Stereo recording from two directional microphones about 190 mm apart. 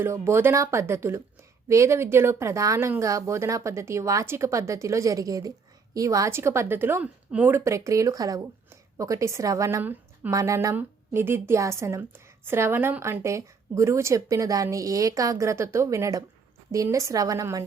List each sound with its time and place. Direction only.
0.0 s speech: 15° right (ahead or behind)